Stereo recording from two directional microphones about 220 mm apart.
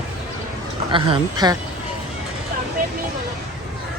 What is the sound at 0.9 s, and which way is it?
Speech, 20° right (ahead or behind).